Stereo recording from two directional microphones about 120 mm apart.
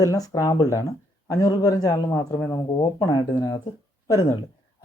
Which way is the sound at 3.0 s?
40° left (ahead or behind).